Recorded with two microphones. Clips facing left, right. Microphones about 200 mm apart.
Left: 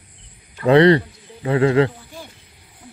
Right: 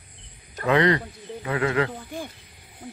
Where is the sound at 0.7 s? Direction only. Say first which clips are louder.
Left 8 dB; 30° left (ahead or behind).